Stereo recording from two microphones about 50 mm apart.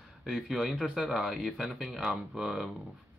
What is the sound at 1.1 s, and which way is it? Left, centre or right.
Speech, centre.